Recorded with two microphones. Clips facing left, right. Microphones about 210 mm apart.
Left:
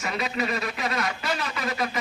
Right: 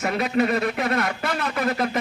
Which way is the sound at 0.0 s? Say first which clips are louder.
Right 7 dB; 55° right (ahead or behind).